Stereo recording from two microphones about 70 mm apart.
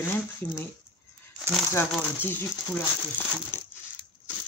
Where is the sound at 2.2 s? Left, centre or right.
Left.